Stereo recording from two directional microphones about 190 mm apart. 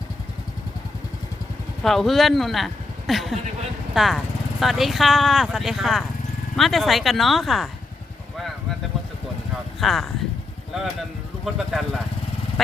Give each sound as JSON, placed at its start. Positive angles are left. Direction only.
{"t": 1.8, "sound": "a man's voice", "side_deg": 0}
{"t": 9.8, "sound": "speech", "side_deg": 0}
{"t": 11.4, "sound": "speech", "side_deg": 0}